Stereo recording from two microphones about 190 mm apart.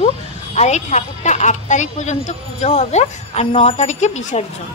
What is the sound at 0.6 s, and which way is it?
A woman's voice, 35° left (ahead or behind).